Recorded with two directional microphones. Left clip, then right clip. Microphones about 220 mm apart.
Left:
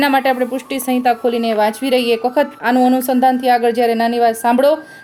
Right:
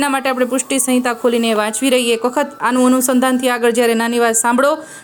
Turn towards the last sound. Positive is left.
turn(degrees=-15)  # may be behind; listen again after turning